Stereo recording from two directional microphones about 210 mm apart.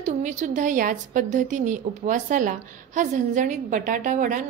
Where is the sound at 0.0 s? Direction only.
35° right (ahead or behind).